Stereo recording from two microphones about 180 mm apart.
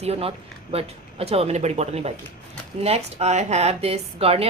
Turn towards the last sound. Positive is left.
turn(degrees=-35)  # may be behind; listen again after turning